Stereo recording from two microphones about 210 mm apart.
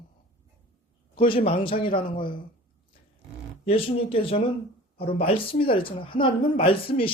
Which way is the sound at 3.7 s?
25° left (ahead or behind).